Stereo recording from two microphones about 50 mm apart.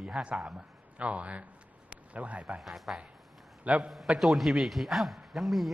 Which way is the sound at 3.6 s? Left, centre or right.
Right.